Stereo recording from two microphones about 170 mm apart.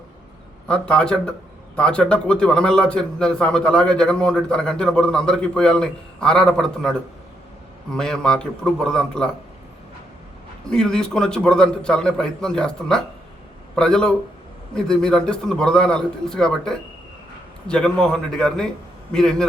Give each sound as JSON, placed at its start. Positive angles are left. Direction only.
{"t": 0.7, "sound": "a man's voice", "side_deg": 5}
{"t": 10.7, "sound": "a man's voice", "side_deg": 5}